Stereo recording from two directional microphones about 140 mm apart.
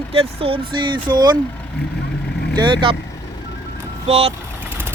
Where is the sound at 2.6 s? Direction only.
35° right (ahead or behind).